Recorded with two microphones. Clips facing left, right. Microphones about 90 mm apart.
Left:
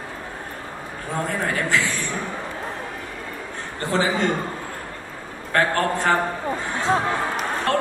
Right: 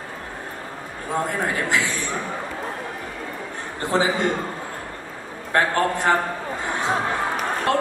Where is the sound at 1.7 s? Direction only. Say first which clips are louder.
Even; 20° right (ahead or behind).